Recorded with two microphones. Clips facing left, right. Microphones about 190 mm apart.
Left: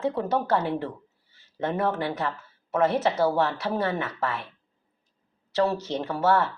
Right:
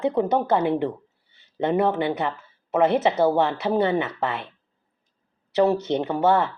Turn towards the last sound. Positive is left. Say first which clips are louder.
# right 3 dB
turn(degrees=-20)  # may be behind; listen again after turning